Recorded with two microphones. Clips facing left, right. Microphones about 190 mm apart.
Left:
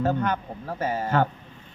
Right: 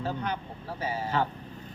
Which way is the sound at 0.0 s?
50° left (ahead or behind).